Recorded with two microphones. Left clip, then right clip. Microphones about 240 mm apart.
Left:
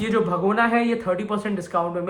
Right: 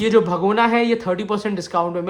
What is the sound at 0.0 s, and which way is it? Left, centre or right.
Speech, right.